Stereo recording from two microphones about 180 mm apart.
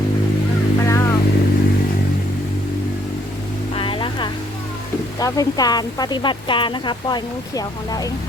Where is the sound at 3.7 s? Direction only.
30° left (ahead or behind).